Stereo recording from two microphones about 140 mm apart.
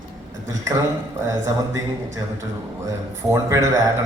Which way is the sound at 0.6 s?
25° right (ahead or behind).